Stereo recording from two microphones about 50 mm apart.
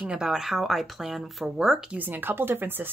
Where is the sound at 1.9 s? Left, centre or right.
Right.